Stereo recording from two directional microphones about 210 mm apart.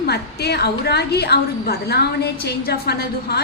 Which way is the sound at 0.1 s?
50° left (ahead or behind).